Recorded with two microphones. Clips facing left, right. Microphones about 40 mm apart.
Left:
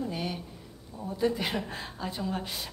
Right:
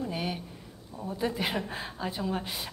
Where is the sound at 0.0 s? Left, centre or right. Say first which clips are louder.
Even; centre.